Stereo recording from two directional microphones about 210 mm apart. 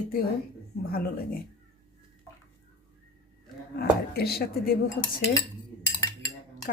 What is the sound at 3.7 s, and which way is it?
Speech, 50° left (ahead or behind).